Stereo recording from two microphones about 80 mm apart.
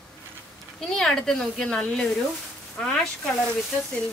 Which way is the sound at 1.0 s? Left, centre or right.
Centre.